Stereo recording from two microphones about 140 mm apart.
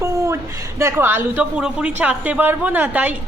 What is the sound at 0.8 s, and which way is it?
A woman's voice, 20° right (ahead or behind).